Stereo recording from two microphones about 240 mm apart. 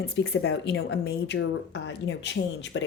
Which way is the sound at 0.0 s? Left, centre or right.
Left.